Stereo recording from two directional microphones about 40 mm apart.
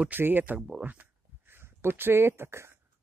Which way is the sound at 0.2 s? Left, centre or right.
Right.